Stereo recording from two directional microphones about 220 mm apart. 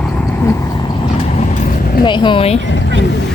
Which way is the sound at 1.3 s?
30° left (ahead or behind).